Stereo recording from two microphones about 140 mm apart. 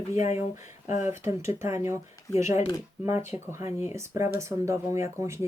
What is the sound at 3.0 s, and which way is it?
Speech, 15° right (ahead or behind).